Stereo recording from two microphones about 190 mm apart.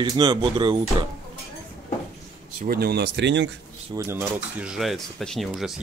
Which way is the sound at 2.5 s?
50° right (ahead or behind).